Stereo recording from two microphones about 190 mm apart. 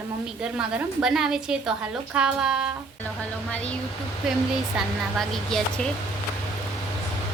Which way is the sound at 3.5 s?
5° left (ahead or behind).